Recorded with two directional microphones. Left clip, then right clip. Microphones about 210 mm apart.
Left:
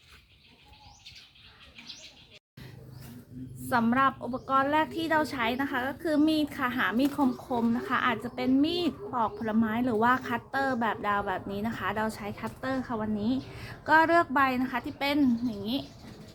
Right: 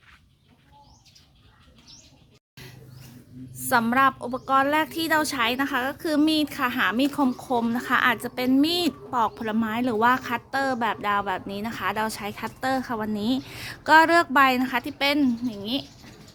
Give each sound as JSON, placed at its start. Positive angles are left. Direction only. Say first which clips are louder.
{"t": 3.7, "sound": "a woman's voice", "louder": "right 5 dB", "side_deg": -55}